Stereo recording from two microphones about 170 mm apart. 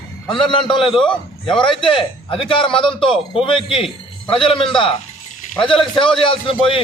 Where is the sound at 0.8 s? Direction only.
Centre (ahead or behind).